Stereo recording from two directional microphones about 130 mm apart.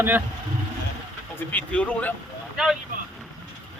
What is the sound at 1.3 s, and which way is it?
Speech, 10° left (ahead or behind).